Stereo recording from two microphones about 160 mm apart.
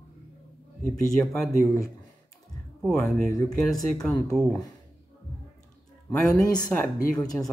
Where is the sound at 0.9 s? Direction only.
Centre (ahead or behind).